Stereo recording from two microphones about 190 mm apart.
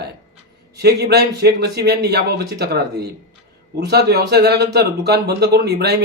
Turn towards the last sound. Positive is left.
turn(degrees=-60)  # may be behind; listen again after turning